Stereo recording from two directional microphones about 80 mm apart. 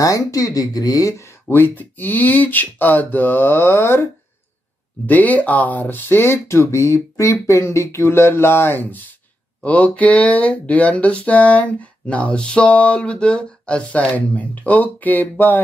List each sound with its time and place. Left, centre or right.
0.0 s speech: left
1.5 s speech: left
5.0 s speech: left
9.7 s a sound: centre